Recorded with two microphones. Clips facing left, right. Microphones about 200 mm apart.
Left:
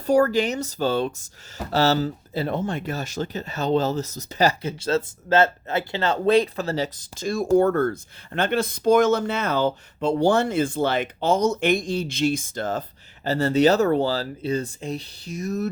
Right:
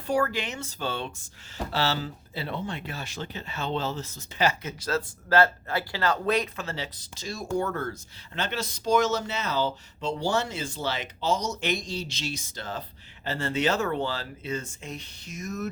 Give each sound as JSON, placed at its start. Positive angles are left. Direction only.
{"t": 0.0, "sound": "speech", "side_deg": 40}
{"t": 13.2, "sound": "speech", "side_deg": 40}